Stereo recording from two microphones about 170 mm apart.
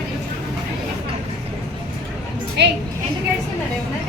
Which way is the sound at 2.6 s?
85° right.